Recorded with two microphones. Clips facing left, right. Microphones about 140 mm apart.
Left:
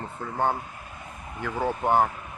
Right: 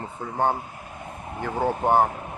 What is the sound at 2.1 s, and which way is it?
Speech, 35° right (ahead or behind).